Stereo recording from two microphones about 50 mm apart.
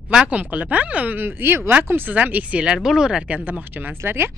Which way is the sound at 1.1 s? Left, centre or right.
Right.